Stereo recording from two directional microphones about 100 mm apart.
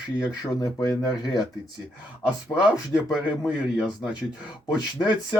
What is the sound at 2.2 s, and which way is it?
A man's voice, 10° right (ahead or behind).